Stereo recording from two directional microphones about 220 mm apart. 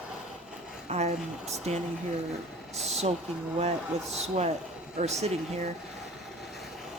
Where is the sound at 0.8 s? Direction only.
30° right (ahead or behind).